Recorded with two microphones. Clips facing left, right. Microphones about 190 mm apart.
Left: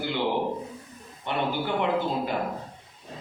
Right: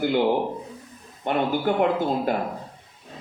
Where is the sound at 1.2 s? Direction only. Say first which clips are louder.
Right 5 dB; 45° right (ahead or behind).